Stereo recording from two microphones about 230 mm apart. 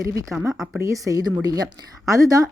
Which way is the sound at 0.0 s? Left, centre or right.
Centre.